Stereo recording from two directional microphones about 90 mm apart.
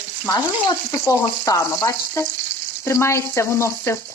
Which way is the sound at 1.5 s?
35° left (ahead or behind).